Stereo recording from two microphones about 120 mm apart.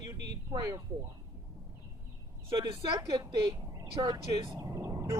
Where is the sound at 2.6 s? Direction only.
35° right (ahead or behind).